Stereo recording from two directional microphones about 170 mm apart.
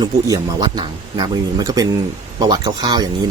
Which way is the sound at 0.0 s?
20° right (ahead or behind).